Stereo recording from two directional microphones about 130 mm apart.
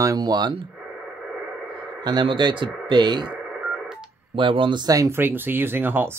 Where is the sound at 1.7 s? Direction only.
35° right (ahead or behind).